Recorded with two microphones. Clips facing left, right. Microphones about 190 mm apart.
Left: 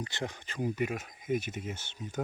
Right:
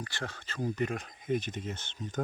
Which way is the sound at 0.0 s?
20° left (ahead or behind).